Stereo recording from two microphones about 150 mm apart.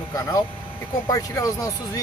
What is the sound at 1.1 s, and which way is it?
Speech, 20° left (ahead or behind).